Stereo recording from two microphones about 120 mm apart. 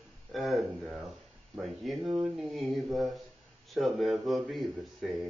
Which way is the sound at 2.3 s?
Centre (ahead or behind).